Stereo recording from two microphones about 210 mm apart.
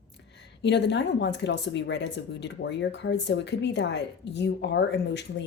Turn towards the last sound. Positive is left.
turn(degrees=55)  # may be behind; listen again after turning